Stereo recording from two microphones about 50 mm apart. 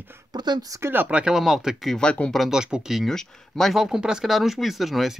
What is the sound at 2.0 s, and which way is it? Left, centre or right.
Speech, left.